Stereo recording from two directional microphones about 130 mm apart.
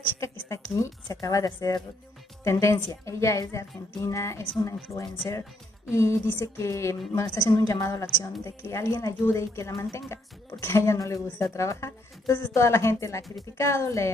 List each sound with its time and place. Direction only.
0.2 s a woman's voice: 20° left (ahead or behind)